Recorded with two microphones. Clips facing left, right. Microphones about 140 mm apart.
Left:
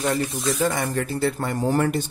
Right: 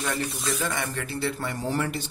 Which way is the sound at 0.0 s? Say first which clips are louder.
Left 6 dB; 35° left (ahead or behind).